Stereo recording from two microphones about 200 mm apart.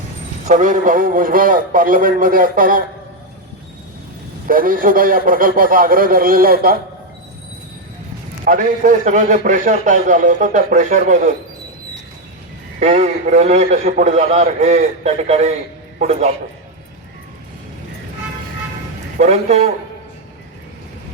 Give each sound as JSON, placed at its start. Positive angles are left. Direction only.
{"t": 0.4, "sound": "a man's voice", "side_deg": -40}
{"t": 4.4, "sound": "a man's voice", "side_deg": -45}
{"t": 8.4, "sound": "a man's voice", "side_deg": -40}
{"t": 12.8, "sound": "a man's voice", "side_deg": -35}
{"t": 19.1, "sound": "a man's voice", "side_deg": -35}